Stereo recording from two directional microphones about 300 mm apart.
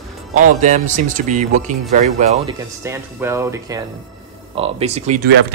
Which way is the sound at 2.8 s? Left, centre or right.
Centre.